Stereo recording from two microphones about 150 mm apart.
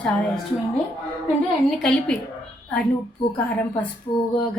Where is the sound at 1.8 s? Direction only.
5° left (ahead or behind).